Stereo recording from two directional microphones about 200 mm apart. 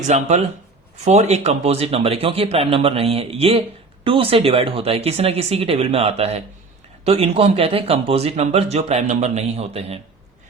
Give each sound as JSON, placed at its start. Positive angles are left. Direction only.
{"t": 0.0, "sound": "speech", "side_deg": -35}